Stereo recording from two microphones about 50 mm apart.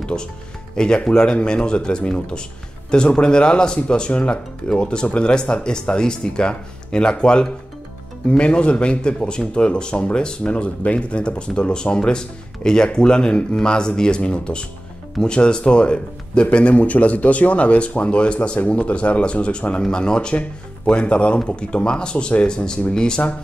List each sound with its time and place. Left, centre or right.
0.0 s speech: centre